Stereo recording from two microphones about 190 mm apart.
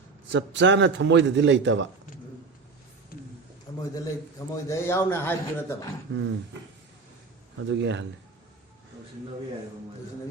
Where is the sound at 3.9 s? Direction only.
20° left (ahead or behind).